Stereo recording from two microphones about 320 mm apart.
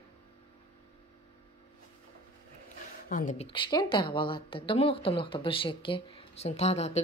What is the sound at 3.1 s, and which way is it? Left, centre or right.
Speech, left.